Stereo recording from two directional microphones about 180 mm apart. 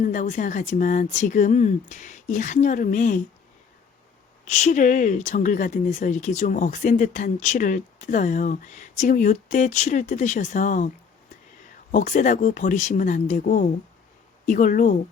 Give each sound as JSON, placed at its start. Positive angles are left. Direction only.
{"t": 0.0, "sound": "speech", "side_deg": 45}
{"t": 4.4, "sound": "speech", "side_deg": 40}